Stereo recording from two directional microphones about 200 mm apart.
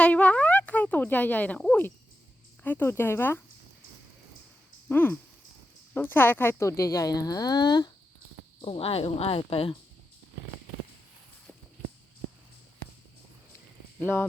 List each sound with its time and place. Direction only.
0.0 s a sound: 5° left (ahead or behind)
2.6 s speech: 10° left (ahead or behind)
4.9 s speech: 10° left (ahead or behind); by 9.7 s 30° left (ahead or behind)